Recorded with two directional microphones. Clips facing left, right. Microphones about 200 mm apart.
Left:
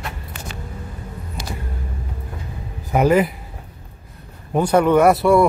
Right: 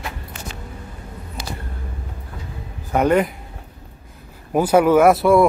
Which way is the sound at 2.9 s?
5° left (ahead or behind).